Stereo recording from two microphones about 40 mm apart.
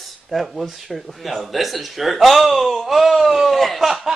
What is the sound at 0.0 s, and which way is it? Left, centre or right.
Speech, centre.